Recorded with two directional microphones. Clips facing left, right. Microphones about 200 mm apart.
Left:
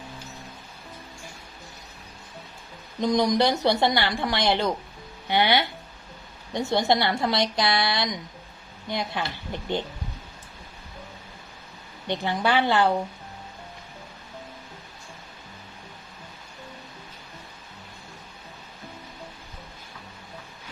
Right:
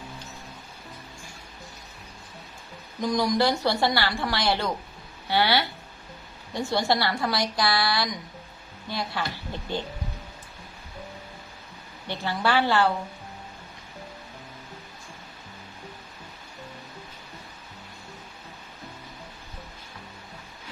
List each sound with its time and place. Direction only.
3.0 s a woman's voice: 20° left (ahead or behind)
12.0 s a woman's voice: 20° left (ahead or behind)